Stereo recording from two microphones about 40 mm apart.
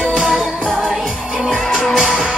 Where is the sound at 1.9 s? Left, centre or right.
Centre.